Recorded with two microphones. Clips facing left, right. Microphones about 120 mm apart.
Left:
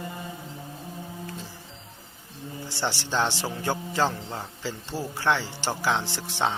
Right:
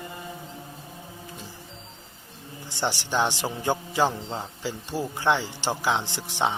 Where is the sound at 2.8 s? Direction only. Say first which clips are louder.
Right 2 dB; 15° right (ahead or behind).